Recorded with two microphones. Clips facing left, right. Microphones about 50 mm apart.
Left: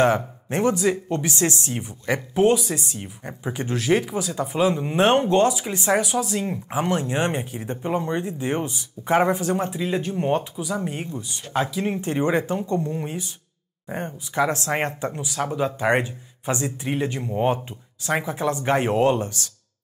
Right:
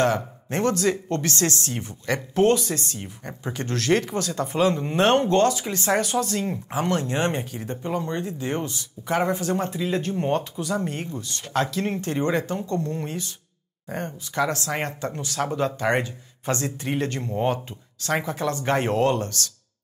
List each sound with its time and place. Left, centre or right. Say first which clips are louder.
0.0 s speech: left 3 dB; centre
14.6 s speech: left 3 dB; left
15.1 s speech: right 2 dB; centre
15.8 s speech: left 2 dB; centre